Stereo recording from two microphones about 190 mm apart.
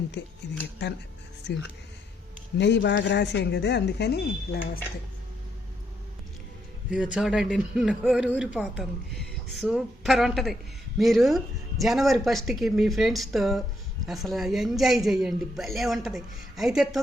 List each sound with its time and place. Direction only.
0.2 s speech: 65° left (ahead or behind)
2.6 s speech: 65° left (ahead or behind)
6.9 s a woman's voice: 5° right (ahead or behind)